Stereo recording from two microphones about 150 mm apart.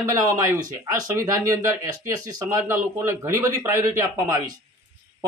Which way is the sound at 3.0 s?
20° right (ahead or behind).